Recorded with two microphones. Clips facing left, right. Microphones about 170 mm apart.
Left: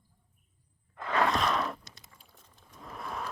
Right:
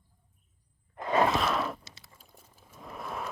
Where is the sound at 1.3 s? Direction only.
5° right (ahead or behind).